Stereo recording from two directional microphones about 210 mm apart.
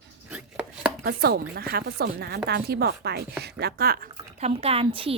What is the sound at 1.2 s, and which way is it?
Speech, 45° right (ahead or behind).